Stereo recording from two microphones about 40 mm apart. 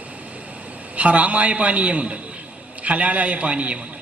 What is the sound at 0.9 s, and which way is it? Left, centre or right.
A man's voice, right.